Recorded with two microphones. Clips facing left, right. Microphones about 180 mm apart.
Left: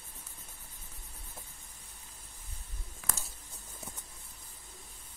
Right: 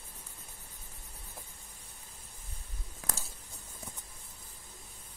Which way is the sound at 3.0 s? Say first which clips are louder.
Right 1 dB; 35° right (ahead or behind).